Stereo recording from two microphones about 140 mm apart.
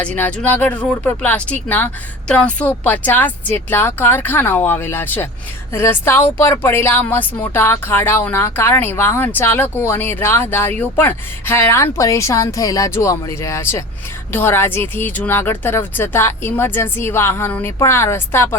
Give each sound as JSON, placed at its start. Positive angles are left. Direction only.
{"t": 0.0, "sound": "speech", "side_deg": 10}